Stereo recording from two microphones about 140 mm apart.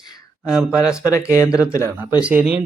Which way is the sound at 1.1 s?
20° left (ahead or behind).